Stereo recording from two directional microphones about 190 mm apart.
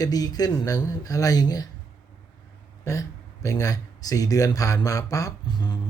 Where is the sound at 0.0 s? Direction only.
20° left (ahead or behind).